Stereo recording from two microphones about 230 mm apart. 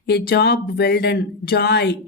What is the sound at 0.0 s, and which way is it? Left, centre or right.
Speech, left.